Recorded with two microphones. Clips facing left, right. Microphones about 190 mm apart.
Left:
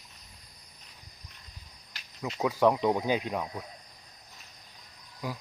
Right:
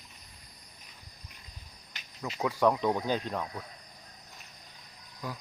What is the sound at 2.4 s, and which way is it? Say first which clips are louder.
Speech: left 2 dB; 15° left (ahead or behind).